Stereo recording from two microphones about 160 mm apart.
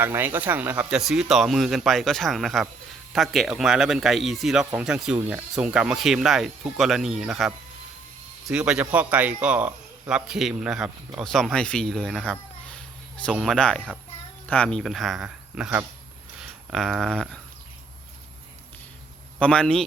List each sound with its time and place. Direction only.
0.0 s a man's voice: 15° right (ahead or behind); by 17.4 s 5° left (ahead or behind)
19.4 s speech: 5° left (ahead or behind)